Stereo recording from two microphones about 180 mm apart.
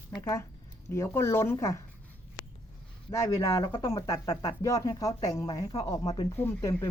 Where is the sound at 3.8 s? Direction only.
20° left (ahead or behind).